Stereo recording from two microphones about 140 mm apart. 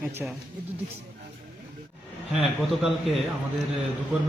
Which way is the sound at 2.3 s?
Centre (ahead or behind).